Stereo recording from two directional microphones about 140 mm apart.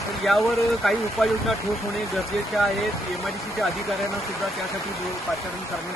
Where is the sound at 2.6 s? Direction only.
Centre (ahead or behind).